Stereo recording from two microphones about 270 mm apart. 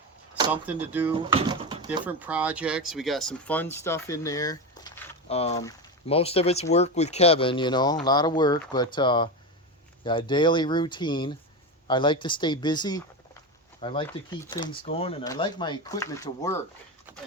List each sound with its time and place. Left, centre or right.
0.3 s speech: centre
1.1 s speech: centre
17.1 s horse: centre